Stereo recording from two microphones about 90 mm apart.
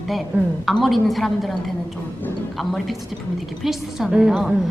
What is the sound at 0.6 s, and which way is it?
A woman's voice, centre (ahead or behind).